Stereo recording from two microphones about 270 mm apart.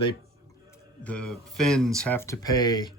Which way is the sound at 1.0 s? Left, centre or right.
Centre.